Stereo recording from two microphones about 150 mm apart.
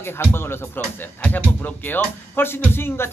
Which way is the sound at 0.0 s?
15° left (ahead or behind).